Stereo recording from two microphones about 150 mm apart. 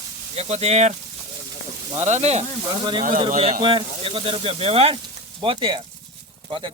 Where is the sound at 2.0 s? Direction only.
50° right (ahead or behind).